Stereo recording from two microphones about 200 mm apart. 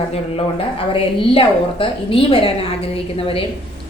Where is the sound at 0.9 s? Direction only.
25° left (ahead or behind).